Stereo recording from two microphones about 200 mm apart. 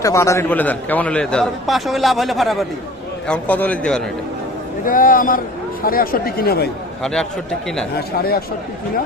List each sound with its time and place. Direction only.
0.0 s a man's voice: 15° left (ahead or behind)
4.9 s speech: 45° left (ahead or behind)
7.0 s a man's voice: 5° left (ahead or behind)
7.9 s speech: 50° left (ahead or behind)